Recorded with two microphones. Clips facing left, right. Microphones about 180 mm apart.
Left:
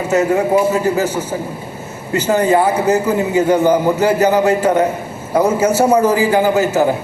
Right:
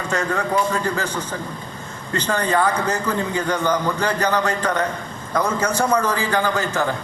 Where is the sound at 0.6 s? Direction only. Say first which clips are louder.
Left 7 dB; 5° left (ahead or behind).